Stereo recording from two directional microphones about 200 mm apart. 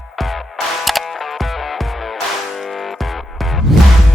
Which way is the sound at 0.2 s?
Centre (ahead or behind).